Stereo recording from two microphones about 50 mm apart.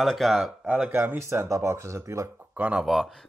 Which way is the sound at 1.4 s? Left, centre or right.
Right.